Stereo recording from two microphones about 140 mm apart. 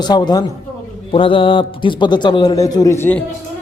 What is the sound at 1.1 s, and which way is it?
A man's voice, 40° left (ahead or behind).